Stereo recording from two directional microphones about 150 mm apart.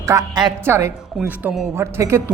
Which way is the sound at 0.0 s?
20° right (ahead or behind).